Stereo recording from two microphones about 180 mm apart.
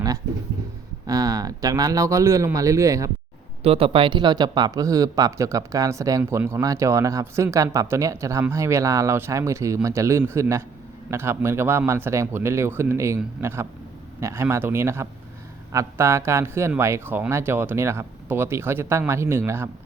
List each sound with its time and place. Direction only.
1.0 s speech: 20° right (ahead or behind)
3.6 s speech: 35° right (ahead or behind); by 19.7 s 15° right (ahead or behind)